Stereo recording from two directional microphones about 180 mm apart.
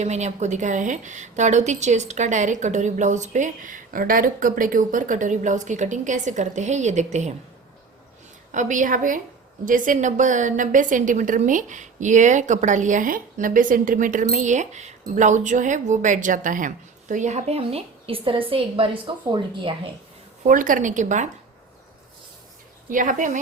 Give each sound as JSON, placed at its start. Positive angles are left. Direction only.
{"t": 0.0, "sound": "a woman's voice", "side_deg": -40}
{"t": 8.5, "sound": "a woman's voice", "side_deg": -45}
{"t": 20.5, "sound": "a woman's voice", "side_deg": -45}
{"t": 22.9, "sound": "a woman's voice", "side_deg": -45}